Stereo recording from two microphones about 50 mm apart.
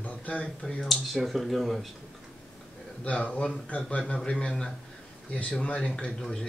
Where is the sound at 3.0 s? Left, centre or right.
Left.